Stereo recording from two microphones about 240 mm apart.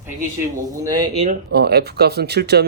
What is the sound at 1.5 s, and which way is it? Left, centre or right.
Speech, right.